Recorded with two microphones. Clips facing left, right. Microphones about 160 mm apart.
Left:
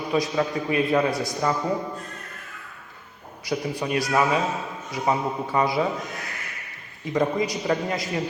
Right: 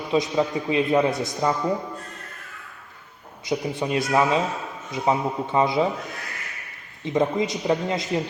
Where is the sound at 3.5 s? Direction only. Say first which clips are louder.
Right 1 dB; 25° right (ahead or behind).